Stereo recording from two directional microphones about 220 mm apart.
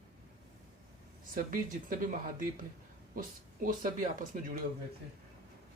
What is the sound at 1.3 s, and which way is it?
Speech, 40° right (ahead or behind).